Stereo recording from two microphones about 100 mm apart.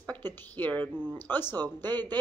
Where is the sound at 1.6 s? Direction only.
45° right (ahead or behind).